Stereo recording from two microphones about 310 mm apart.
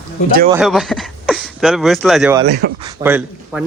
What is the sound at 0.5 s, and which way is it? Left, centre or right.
A man's voice, centre.